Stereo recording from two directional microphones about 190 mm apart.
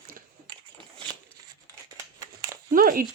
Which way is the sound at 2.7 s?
50° right (ahead or behind).